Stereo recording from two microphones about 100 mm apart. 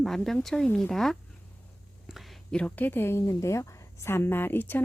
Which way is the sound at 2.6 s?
20° left (ahead or behind).